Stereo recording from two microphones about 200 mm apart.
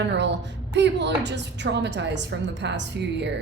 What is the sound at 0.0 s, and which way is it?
A woman's voice, 60° right (ahead or behind).